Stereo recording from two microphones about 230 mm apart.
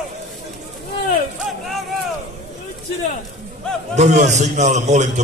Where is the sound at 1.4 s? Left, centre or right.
Centre.